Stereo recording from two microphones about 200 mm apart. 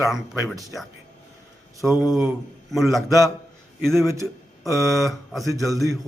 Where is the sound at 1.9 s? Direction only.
15° left (ahead or behind).